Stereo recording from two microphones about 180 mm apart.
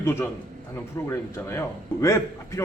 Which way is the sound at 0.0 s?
10° left (ahead or behind).